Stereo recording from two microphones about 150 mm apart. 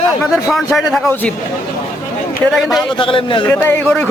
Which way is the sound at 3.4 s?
15° left (ahead or behind).